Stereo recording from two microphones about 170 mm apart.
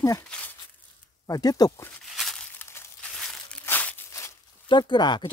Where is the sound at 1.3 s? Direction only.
20° left (ahead or behind).